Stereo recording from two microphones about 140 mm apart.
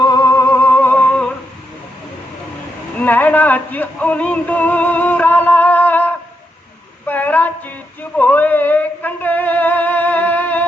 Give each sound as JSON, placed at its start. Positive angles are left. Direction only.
{"t": 0.0, "sound": "music", "side_deg": 25}
{"t": 3.0, "sound": "music", "side_deg": 10}
{"t": 7.1, "sound": "a sound", "side_deg": 10}